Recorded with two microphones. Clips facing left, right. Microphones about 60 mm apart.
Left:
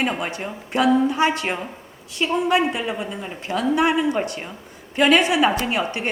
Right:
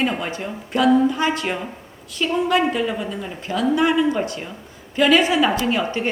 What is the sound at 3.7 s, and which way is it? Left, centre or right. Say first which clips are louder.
Speech: right 1 dB; left.